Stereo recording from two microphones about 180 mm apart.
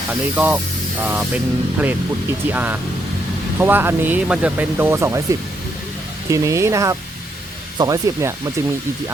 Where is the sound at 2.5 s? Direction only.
10° right (ahead or behind).